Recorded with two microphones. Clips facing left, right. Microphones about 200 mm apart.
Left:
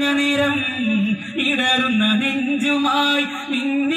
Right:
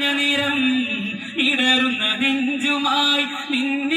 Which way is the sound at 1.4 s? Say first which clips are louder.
Right 4 dB; 50° left (ahead or behind).